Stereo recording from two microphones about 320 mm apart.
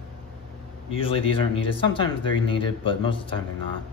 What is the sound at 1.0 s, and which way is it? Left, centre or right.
Speech, centre.